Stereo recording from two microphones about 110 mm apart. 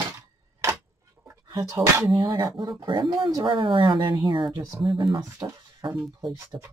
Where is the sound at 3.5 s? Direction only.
50° right (ahead or behind).